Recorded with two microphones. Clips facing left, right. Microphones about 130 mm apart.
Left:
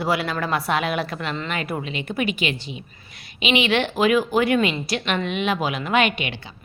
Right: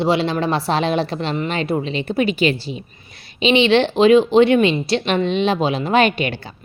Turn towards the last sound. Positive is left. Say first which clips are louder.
# right 6 dB
turn(degrees=-40)  # may be behind; listen again after turning